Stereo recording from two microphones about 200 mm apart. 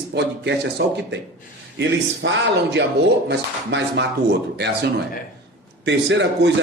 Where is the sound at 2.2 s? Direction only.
65° right (ahead or behind).